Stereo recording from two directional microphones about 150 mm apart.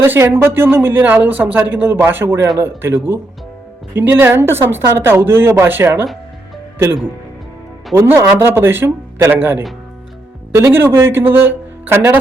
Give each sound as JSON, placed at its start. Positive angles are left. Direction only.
{"t": 0.0, "sound": "speech", "side_deg": -15}
{"t": 7.9, "sound": "speech", "side_deg": -15}